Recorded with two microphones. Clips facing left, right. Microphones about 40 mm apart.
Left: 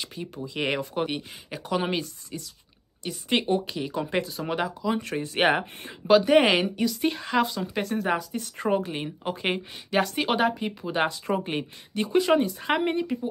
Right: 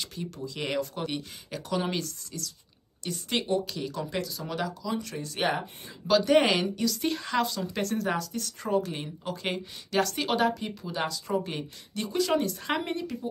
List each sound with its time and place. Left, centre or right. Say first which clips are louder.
0.0 s speech: left 1 dB; centre
0.6 s speech: left 4 dB; left
5.4 s speech: left 6 dB; left
6.0 s speech: left 4 dB; left
8.5 s speech: left 3 dB; left
8.8 s speech: left 4 dB; left
10.9 s speech: left 4 dB; left
11.4 s speech: left 5 dB; left